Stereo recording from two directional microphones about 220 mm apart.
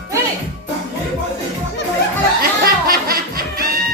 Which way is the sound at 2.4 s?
40° right (ahead or behind).